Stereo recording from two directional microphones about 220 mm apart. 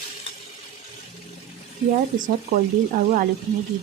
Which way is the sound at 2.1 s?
35° right (ahead or behind).